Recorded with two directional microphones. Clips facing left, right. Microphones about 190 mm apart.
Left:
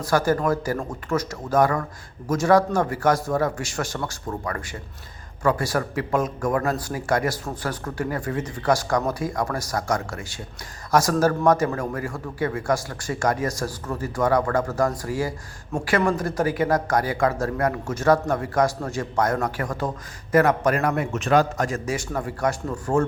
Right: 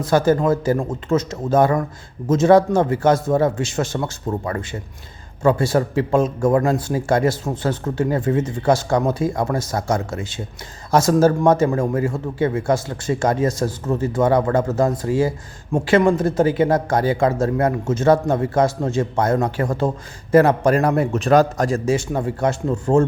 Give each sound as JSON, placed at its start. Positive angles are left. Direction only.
{"t": 0.0, "sound": "speech", "side_deg": -25}